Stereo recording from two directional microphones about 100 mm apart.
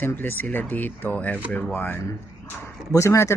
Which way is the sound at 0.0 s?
20° left (ahead or behind).